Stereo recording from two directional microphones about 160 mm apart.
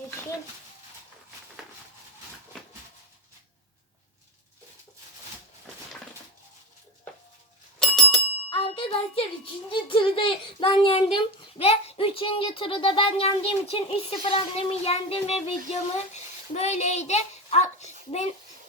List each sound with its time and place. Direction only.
7.8 s bicycle bell: 5° left (ahead or behind)
8.4 s music: 35° left (ahead or behind)
9.6 s a child's voice: 30° left (ahead or behind)